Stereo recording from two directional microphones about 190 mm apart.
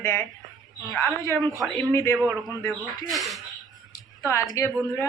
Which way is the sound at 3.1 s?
Centre (ahead or behind).